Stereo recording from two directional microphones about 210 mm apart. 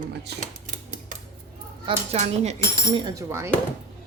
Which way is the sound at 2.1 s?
35° right (ahead or behind).